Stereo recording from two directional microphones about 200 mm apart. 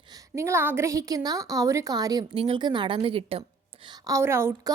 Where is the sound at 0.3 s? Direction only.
15° right (ahead or behind).